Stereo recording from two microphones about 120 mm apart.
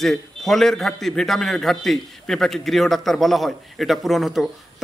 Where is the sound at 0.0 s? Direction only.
Centre (ahead or behind).